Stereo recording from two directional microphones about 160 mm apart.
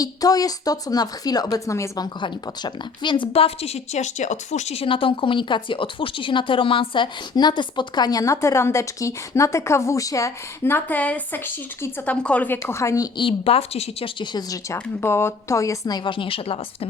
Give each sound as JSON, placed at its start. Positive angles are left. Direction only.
{"t": 0.0, "sound": "a woman's voice", "side_deg": 20}
{"t": 2.2, "sound": "a woman's voice", "side_deg": 30}
{"t": 13.1, "sound": "a woman's voice", "side_deg": 35}
{"t": 16.0, "sound": "a woman's voice", "side_deg": 35}